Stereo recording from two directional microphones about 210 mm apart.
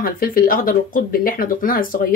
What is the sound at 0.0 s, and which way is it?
Speech, 45° left (ahead or behind).